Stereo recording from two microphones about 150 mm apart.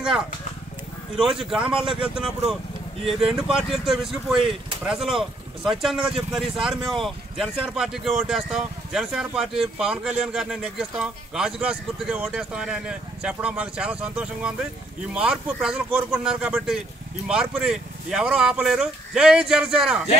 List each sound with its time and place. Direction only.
1.1 s speech: 5° right (ahead or behind)
4.4 s speech: 35° right (ahead or behind)
4.8 s speech: 5° right (ahead or behind)